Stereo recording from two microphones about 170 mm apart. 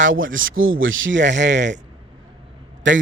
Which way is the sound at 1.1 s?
90° right.